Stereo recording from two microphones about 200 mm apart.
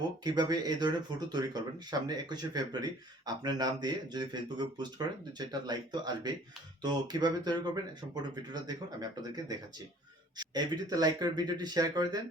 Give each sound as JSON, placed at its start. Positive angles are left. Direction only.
{"t": 0.3, "sound": "speech", "side_deg": -20}